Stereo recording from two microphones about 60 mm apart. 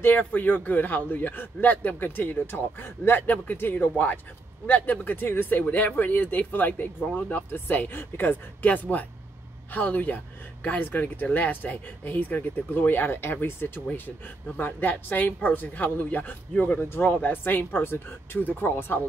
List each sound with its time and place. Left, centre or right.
0.2 s a man's voice: left
8.6 s a man's voice: left